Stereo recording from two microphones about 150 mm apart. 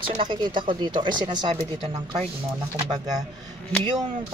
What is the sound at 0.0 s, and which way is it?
Speech, 35° right (ahead or behind).